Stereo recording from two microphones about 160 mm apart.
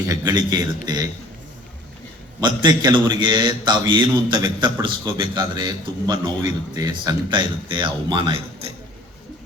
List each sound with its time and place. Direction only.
0.1 s a man's voice: 25° right (ahead or behind)
2.4 s a man's voice: 30° right (ahead or behind)